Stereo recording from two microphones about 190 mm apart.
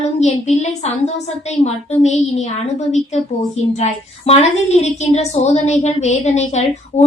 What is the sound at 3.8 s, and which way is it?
A woman's voice, 35° left (ahead or behind).